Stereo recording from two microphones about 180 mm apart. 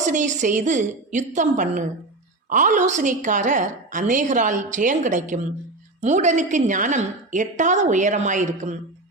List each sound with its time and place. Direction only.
0.0 s a woman's voice: 45° right (ahead or behind)